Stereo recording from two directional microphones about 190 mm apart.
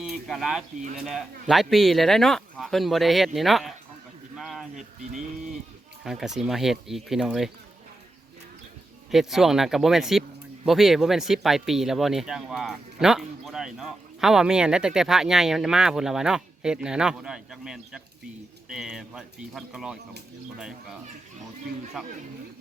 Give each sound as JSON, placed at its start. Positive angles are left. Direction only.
{"t": 0.0, "sound": "speech", "side_deg": 0}
{"t": 4.4, "sound": "a sound", "side_deg": 0}
{"t": 4.7, "sound": "speech", "side_deg": -40}
{"t": 6.0, "sound": "speech", "side_deg": 0}
{"t": 9.0, "sound": "speech", "side_deg": 0}
{"t": 22.0, "sound": "speech", "side_deg": 0}